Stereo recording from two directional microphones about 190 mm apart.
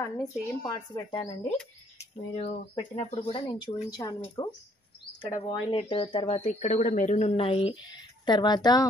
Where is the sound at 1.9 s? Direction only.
35° left (ahead or behind).